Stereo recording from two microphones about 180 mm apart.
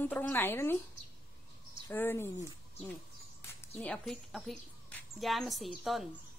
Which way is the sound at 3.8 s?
5° left (ahead or behind).